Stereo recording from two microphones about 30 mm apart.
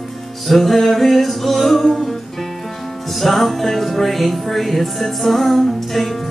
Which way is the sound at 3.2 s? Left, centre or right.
Centre.